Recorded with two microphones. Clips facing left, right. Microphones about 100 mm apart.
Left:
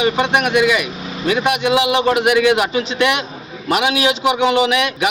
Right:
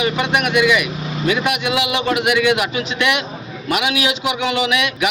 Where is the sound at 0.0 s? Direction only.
30° left (ahead or behind).